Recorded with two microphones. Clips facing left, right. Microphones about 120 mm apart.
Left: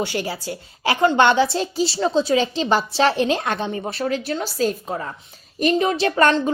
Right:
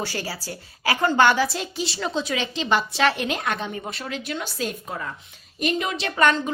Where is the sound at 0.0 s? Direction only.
20° left (ahead or behind).